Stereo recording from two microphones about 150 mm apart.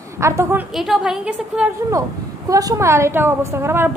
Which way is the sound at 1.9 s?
20° right (ahead or behind).